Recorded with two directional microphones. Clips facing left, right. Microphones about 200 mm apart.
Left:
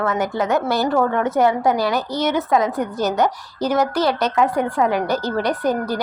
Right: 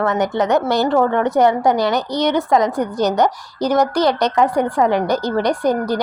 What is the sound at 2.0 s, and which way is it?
Speech, 15° right (ahead or behind).